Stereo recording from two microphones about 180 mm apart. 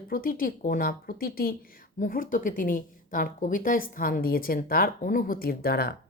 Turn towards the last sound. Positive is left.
turn(degrees=60)  # may be behind; listen again after turning